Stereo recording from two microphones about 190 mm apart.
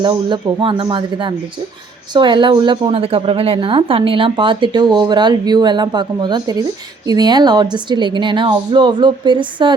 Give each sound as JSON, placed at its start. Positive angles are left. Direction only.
{"t": 0.0, "sound": "a woman's voice", "side_deg": -25}